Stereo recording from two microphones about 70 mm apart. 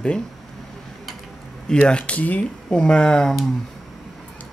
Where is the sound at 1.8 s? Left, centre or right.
Centre.